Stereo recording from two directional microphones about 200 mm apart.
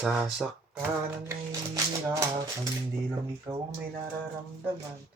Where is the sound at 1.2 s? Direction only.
15° right (ahead or behind).